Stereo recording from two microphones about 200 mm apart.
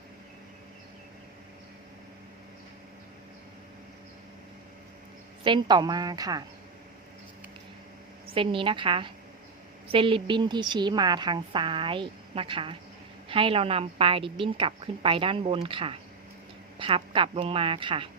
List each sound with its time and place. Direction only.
5.4 s a woman's voice: 25° right (ahead or behind)
8.3 s a woman's voice: 25° right (ahead or behind)